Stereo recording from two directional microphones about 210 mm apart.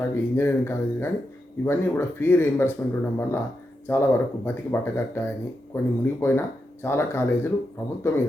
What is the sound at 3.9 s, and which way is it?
Speech, 10° left (ahead or behind).